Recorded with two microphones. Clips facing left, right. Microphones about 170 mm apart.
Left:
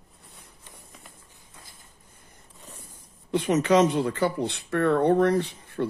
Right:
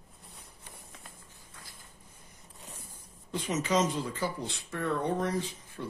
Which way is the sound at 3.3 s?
65° left (ahead or behind).